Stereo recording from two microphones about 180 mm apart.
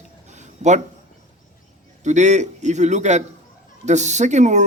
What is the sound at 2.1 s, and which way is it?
Speech, 40° right (ahead or behind).